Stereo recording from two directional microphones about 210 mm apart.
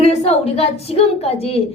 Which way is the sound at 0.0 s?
30° left (ahead or behind).